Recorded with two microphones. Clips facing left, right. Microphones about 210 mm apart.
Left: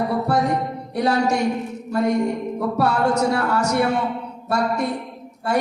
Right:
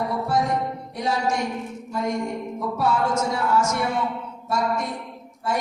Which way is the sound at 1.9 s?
65° left (ahead or behind).